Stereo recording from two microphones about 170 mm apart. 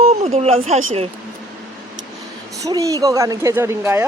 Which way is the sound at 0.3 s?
35° right (ahead or behind).